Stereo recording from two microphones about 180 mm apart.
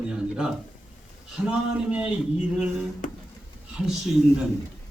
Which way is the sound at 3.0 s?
45° left (ahead or behind).